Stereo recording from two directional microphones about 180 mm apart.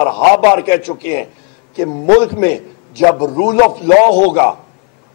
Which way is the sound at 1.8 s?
20° left (ahead or behind).